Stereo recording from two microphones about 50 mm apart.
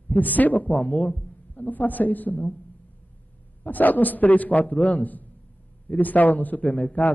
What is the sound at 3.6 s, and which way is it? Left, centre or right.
A man's voice, left.